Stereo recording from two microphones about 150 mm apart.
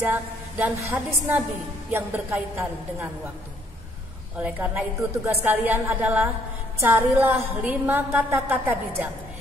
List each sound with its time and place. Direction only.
0.1 s a sound: 10° right (ahead or behind)
0.8 s a woman's voice: 15° right (ahead or behind)
4.4 s a woman's voice: 10° right (ahead or behind)